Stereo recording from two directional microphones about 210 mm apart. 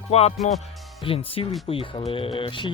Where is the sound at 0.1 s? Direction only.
30° left (ahead or behind).